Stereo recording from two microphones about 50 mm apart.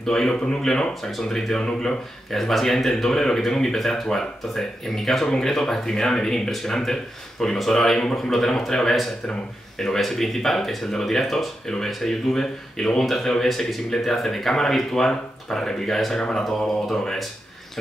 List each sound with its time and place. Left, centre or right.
0.0 s speech: centre
16.2 s speech: centre
16.4 s speech: centre